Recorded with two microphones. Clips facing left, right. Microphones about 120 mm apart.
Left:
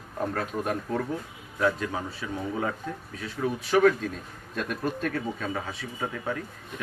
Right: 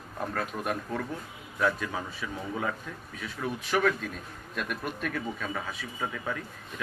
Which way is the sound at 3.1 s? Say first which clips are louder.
Left 4 dB; 35° left (ahead or behind).